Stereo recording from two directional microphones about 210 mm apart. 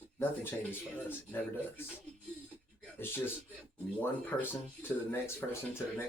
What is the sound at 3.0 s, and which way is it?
Speech, 10° left (ahead or behind).